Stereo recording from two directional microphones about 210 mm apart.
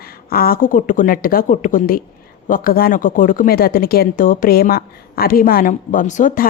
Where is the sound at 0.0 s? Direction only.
45° left (ahead or behind).